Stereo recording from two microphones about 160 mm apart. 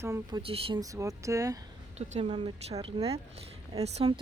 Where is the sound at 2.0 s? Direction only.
45° right (ahead or behind).